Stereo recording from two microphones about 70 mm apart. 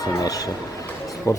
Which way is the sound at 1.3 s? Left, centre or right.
Left.